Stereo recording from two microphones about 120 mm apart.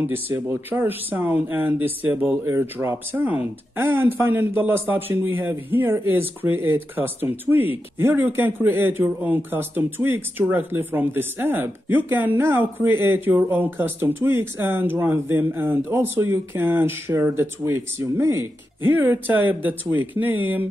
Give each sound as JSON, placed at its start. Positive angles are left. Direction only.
{"t": 0.0, "sound": "speech", "side_deg": -20}